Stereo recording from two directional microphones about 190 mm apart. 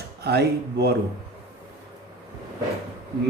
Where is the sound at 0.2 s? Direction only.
55° right (ahead or behind).